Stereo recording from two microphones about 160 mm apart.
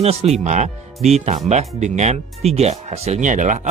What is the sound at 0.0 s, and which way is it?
Speech, 40° right (ahead or behind).